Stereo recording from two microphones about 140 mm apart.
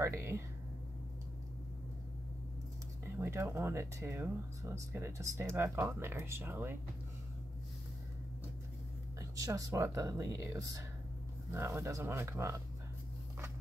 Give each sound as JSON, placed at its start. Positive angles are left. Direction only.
{"t": 0.0, "sound": "speech", "side_deg": -20}
{"t": 3.2, "sound": "speech", "side_deg": -20}
{"t": 9.2, "sound": "speech", "side_deg": -25}